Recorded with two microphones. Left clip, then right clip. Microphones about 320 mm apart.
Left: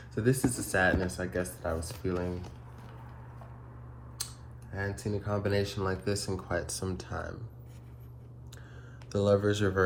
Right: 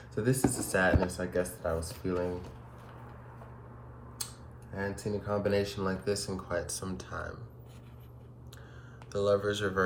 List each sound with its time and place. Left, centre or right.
0.2 s speech: centre
4.7 s speech: centre
9.1 s speech: centre